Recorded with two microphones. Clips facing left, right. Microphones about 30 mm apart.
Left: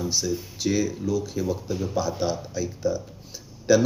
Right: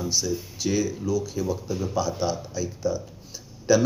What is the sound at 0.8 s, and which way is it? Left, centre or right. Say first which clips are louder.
Speech: even; left.